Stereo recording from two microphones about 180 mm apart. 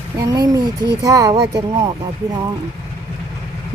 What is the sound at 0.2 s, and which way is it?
Speech, 20° right (ahead or behind).